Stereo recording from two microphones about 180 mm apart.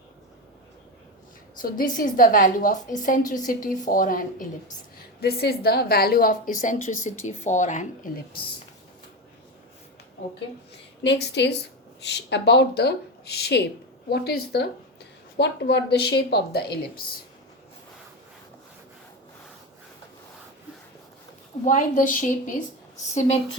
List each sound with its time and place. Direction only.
1.6 s a woman's voice: 50° left (ahead or behind)
5.2 s a woman's voice: 60° left (ahead or behind)
11.0 s speech: 75° left (ahead or behind)
15.4 s speech: 75° left (ahead or behind); by 17.2 s 55° left (ahead or behind)
21.6 s a woman's voice: 45° left (ahead or behind)